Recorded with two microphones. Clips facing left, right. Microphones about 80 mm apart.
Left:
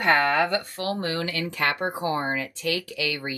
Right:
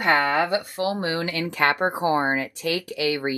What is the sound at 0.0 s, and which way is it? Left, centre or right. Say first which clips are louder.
Speech: even; centre.